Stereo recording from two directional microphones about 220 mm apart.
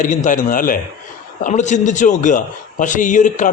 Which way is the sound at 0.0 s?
35° left (ahead or behind).